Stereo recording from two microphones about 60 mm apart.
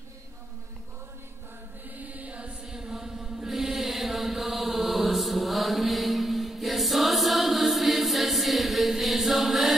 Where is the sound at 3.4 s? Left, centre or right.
Centre.